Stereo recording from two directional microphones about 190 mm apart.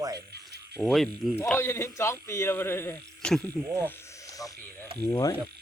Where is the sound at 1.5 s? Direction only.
15° left (ahead or behind).